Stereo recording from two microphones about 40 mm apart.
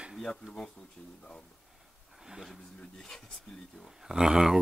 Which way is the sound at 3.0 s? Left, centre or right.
Centre.